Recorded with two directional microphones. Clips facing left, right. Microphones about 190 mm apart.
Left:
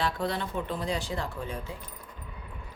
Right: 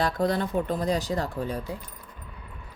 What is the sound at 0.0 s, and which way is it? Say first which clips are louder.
Speech: right 5 dB; 40° right (ahead or behind).